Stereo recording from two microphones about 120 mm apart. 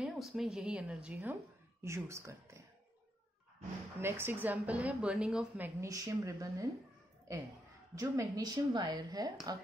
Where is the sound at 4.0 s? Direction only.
20° right (ahead or behind).